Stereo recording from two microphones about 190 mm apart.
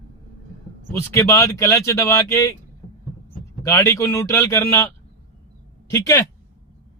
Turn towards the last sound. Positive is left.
turn(degrees=15)  # may be behind; listen again after turning